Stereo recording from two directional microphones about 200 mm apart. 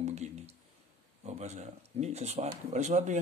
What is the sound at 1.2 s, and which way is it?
A man's voice, 35° right (ahead or behind).